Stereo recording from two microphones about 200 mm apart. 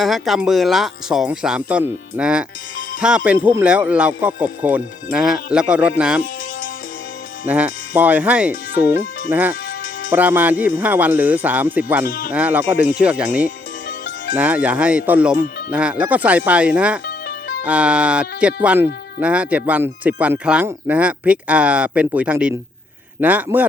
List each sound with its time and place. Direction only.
0.0 s speech: centre (ahead or behind)
7.4 s speech: 5° right (ahead or behind)
12.0 s speech: 45° left (ahead or behind)
12.3 s speech: 10° right (ahead or behind)